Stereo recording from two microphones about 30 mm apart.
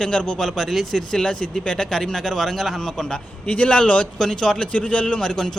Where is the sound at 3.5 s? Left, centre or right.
Left.